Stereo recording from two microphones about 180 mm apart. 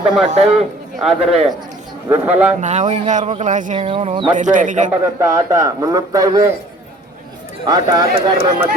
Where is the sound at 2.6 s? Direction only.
40° right (ahead or behind).